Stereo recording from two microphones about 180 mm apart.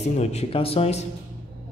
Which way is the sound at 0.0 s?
35° left (ahead or behind).